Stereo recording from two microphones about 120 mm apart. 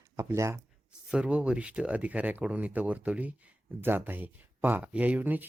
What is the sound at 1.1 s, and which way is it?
Speech, 10° right (ahead or behind).